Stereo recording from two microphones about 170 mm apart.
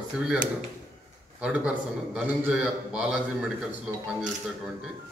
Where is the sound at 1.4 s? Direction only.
5° right (ahead or behind).